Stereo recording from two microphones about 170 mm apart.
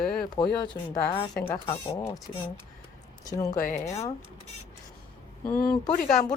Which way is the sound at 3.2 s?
20° left (ahead or behind).